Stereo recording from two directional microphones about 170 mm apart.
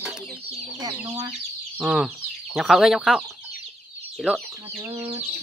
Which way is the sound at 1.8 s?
5° right (ahead or behind).